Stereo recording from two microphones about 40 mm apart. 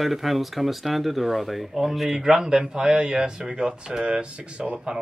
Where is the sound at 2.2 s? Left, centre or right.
Centre.